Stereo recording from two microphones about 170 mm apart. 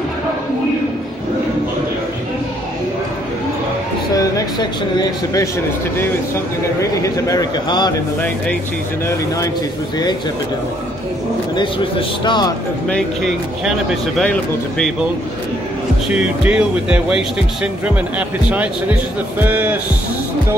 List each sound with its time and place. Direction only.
6.8 s a man's voice: 20° left (ahead or behind)
9.0 s speech: 15° left (ahead or behind)
11.5 s a man's voice: 30° left (ahead or behind)
12.8 s speech: 5° left (ahead or behind)
16.2 s speech: 5° right (ahead or behind)